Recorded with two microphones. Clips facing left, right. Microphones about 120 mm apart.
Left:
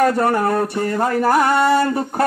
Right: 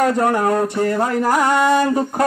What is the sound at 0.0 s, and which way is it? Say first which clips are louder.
Music: even; 15° right (ahead or behind).